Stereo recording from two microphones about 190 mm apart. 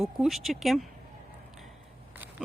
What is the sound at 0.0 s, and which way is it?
Speech, centre (ahead or behind).